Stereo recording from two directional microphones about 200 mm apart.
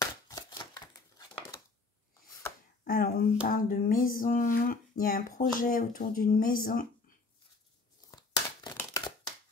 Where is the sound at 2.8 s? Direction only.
50° left (ahead or behind).